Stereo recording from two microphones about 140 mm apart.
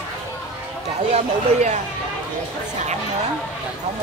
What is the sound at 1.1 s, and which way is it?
Speech, 55° right (ahead or behind).